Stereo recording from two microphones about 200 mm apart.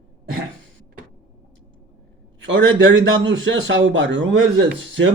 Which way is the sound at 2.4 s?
70° right (ahead or behind).